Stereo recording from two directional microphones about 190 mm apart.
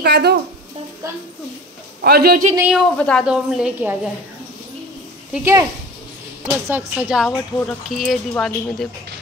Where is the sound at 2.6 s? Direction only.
5° right (ahead or behind).